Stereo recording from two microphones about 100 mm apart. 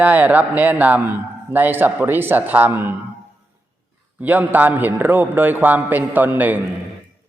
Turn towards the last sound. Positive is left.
turn(degrees=-15)  # may be behind; listen again after turning